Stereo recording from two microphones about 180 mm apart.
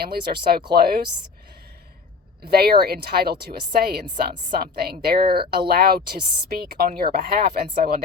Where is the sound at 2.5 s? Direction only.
60° right (ahead or behind).